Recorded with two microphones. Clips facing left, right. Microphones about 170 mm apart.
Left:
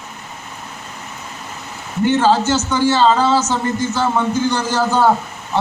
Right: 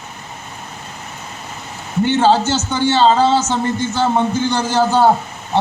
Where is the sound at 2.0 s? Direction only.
30° right (ahead or behind).